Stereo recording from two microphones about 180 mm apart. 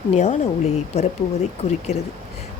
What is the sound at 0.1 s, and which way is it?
Speech, 40° left (ahead or behind).